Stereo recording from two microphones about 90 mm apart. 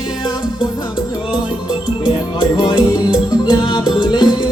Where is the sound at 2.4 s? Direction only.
60° left (ahead or behind).